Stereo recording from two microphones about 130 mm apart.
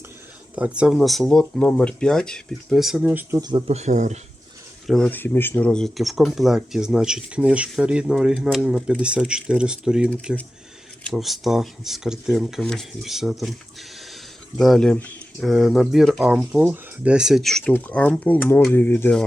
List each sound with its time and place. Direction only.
0.5 s speech: 10° right (ahead or behind)
3.7 s speech: 60° right (ahead or behind)
4.9 s speech: 10° left (ahead or behind)
14.6 s speech: 5° left (ahead or behind)
15.4 s speech: centre (ahead or behind); by 19.2 s 15° left (ahead or behind)